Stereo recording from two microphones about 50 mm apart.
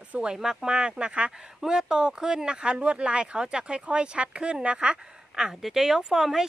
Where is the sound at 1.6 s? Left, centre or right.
Centre.